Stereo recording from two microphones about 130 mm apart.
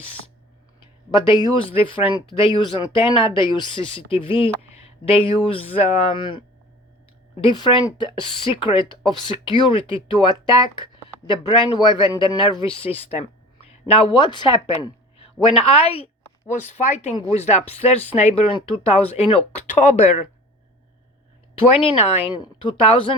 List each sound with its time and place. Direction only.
1.1 s speech: 40° left (ahead or behind)
7.4 s speech: 40° left (ahead or behind)
14.1 s a woman's voice: 35° left (ahead or behind)
16.5 s speech: 70° left (ahead or behind)
21.8 s speech: 50° left (ahead or behind)